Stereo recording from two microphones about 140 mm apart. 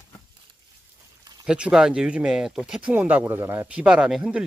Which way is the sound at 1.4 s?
5° right (ahead or behind).